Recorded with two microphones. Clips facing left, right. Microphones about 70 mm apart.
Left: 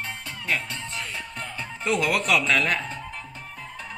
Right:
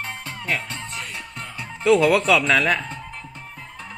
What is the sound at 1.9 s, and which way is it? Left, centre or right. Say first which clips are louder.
Speech: right 9 dB; right.